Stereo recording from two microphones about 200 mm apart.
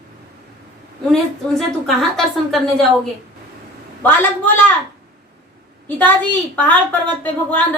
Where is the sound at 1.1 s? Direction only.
Centre (ahead or behind).